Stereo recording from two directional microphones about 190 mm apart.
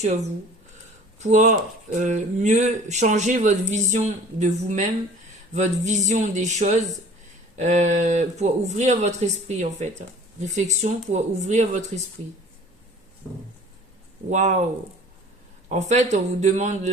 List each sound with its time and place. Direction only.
1.2 s speech: 40° right (ahead or behind)
14.3 s speech: 40° right (ahead or behind)
15.7 s speech: 40° right (ahead or behind)